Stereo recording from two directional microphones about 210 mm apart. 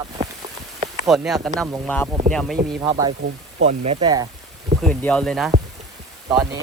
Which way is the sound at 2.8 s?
10° right (ahead or behind).